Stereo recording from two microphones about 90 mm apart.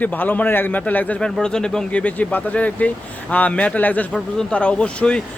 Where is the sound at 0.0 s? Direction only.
20° left (ahead or behind).